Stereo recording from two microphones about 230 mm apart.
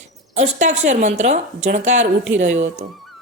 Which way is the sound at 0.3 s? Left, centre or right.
Right.